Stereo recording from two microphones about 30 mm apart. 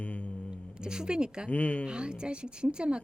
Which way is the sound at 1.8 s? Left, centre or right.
Right.